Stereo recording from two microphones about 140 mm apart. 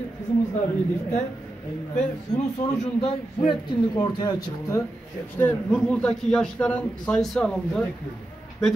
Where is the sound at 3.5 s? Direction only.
30° left (ahead or behind).